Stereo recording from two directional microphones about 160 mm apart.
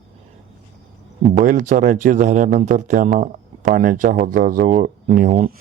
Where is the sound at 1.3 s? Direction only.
55° right (ahead or behind).